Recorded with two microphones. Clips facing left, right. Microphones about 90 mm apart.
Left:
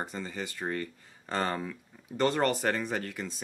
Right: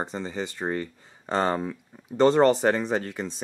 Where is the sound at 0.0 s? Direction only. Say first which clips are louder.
Right 6 dB; 25° right (ahead or behind).